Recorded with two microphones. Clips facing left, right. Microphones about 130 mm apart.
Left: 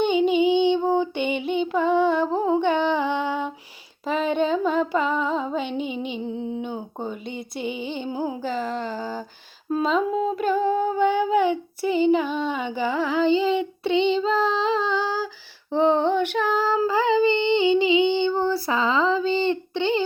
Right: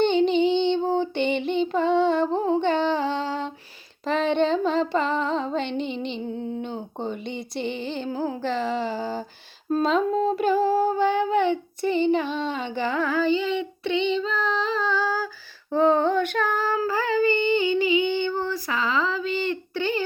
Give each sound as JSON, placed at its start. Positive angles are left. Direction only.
{"t": 0.0, "sound": "female singing", "side_deg": 10}
{"t": 4.0, "sound": "a sound", "side_deg": 5}
{"t": 8.4, "sound": "humming", "side_deg": 0}
{"t": 13.2, "sound": "child singing", "side_deg": 30}
{"t": 15.7, "sound": "female singing", "side_deg": 15}